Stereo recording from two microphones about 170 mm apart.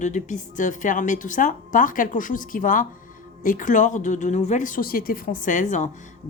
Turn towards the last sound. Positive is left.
turn(degrees=45)  # may be behind; listen again after turning